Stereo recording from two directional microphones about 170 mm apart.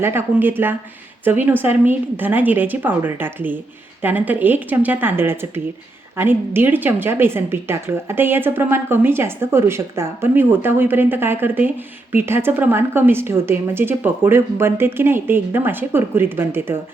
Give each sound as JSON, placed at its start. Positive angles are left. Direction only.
{"t": 0.0, "sound": "a woman's voice", "side_deg": -15}